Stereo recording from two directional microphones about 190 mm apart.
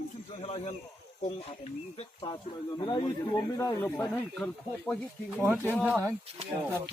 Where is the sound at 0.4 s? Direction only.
30° left (ahead or behind).